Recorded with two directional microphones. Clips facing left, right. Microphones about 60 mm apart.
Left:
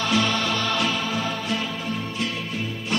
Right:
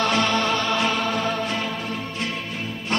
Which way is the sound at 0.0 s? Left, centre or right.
Right.